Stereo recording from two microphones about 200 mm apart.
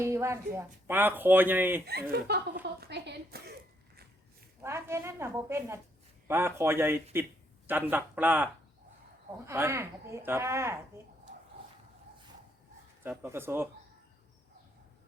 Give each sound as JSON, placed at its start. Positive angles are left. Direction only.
{"t": 0.0, "sound": "speech", "side_deg": -15}
{"t": 1.9, "sound": "a woman's voice", "side_deg": -55}
{"t": 4.6, "sound": "speech", "side_deg": -15}
{"t": 9.5, "sound": "speech", "side_deg": -15}
{"t": 13.0, "sound": "speech", "side_deg": -10}